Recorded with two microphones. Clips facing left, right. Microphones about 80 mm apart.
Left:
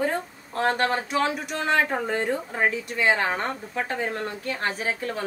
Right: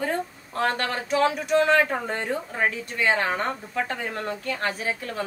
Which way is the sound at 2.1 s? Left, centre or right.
Left.